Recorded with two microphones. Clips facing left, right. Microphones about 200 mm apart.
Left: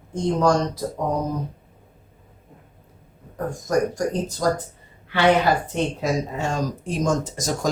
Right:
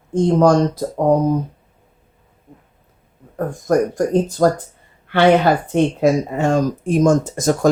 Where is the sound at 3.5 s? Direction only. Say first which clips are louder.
Right 5 dB; 55° right (ahead or behind).